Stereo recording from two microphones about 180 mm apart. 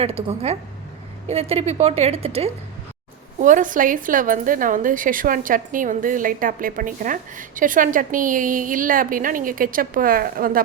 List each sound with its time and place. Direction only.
0.0 s a woman's voice: 35° right (ahead or behind)
3.4 s a woman's voice: 45° right (ahead or behind)